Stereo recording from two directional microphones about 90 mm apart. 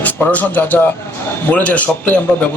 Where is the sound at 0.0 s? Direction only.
15° left (ahead or behind).